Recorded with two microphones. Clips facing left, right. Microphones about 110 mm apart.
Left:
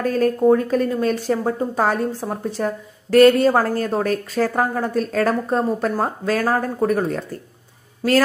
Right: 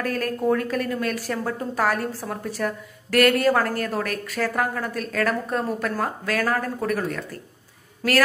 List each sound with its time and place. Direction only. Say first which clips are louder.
0.0 s speech: left 7 dB; 30° left (ahead or behind)